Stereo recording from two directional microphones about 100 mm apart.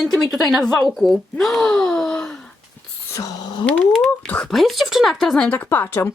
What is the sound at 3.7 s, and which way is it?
A woman's voice, 10° left (ahead or behind).